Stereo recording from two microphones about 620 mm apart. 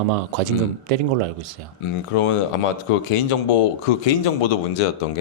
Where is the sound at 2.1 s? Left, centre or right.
Left.